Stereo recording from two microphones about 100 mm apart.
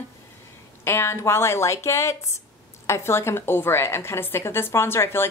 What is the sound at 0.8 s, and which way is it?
A woman's voice, 25° left (ahead or behind).